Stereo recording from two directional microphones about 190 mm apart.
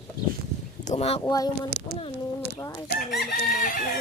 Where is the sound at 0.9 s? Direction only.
30° left (ahead or behind).